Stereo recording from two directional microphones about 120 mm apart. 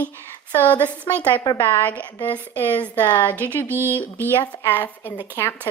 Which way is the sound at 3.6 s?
20° right (ahead or behind).